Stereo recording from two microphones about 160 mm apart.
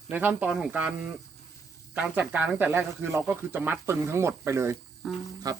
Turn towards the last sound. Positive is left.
turn(degrees=-25)  # may be behind; listen again after turning